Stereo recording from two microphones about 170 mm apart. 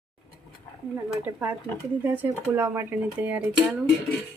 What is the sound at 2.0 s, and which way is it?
Speech, 10° right (ahead or behind).